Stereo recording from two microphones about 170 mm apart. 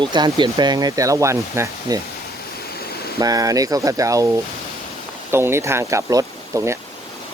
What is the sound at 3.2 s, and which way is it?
Speech, 20° right (ahead or behind).